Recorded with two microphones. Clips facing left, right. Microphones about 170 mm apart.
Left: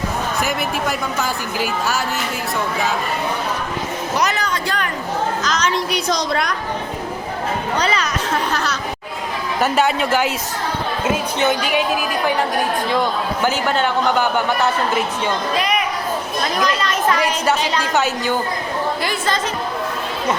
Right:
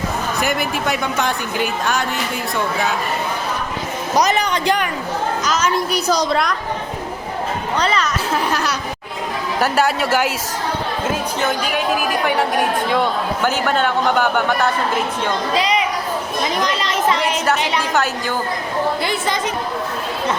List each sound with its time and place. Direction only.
0.4 s speech: centre (ahead or behind)
4.2 s speech: 20° right (ahead or behind); by 6.6 s centre (ahead or behind)
7.8 s speech: centre (ahead or behind)
13.4 s speech: 5° left (ahead or behind)
16.4 s speech: 20° right (ahead or behind)